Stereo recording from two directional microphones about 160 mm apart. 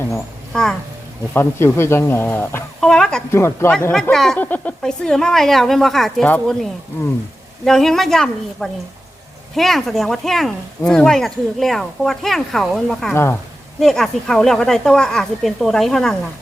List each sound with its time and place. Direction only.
0.1 s speech: 5° left (ahead or behind)
1.3 s a man's voice: 15° left (ahead or behind)
3.3 s a man's voice: 15° left (ahead or behind)
13.1 s a man's voice: 15° left (ahead or behind)
13.7 s speech: centre (ahead or behind)